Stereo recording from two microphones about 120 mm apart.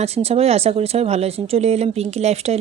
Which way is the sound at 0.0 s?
60° right (ahead or behind).